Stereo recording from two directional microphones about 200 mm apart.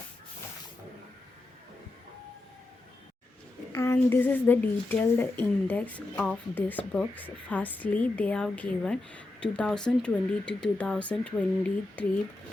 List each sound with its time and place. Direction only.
3.7 s a woman's voice: 15° left (ahead or behind)